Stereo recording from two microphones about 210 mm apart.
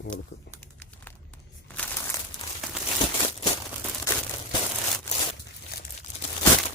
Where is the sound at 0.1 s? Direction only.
5° left (ahead or behind).